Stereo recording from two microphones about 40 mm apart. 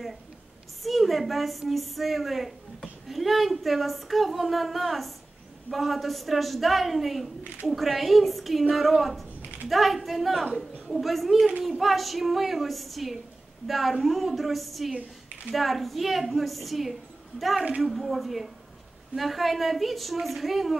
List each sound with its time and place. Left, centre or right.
0.8 s a woman's voice: centre
9.4 s a sound: right
9.7 s speech: centre